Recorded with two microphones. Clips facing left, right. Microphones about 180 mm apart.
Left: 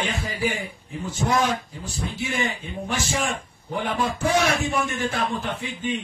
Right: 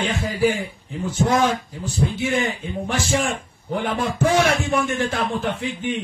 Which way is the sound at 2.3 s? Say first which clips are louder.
Right 5 dB; 55° right (ahead or behind).